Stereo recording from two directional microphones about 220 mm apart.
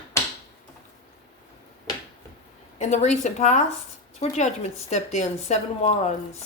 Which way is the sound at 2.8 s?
30° left (ahead or behind).